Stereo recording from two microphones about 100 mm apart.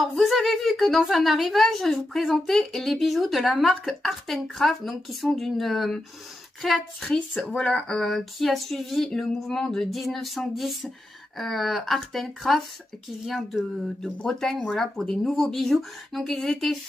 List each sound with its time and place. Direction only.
0.0 s a woman's voice: centre (ahead or behind)